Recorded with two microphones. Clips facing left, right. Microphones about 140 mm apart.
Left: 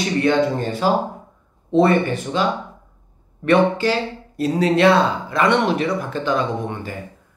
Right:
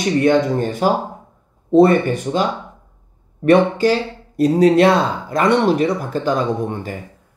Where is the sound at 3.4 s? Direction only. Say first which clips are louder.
Right 3 dB; 45° right (ahead or behind).